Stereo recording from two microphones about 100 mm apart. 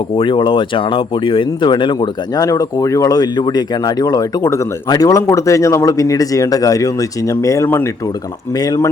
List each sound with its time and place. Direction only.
0.2 s speech: 55° left (ahead or behind); by 7.9 s 25° left (ahead or behind)
8.5 s speech: 40° left (ahead or behind)